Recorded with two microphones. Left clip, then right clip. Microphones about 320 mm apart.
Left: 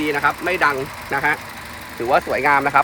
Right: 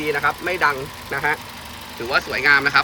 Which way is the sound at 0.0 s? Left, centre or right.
Left.